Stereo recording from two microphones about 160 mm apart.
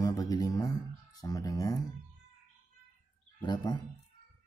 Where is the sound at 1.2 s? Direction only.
25° left (ahead or behind).